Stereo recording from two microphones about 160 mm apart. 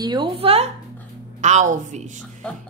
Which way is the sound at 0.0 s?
25° right (ahead or behind).